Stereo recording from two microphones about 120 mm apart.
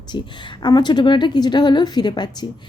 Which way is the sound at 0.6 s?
35° left (ahead or behind).